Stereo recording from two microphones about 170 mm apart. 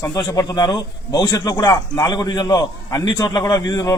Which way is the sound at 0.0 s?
20° left (ahead or behind).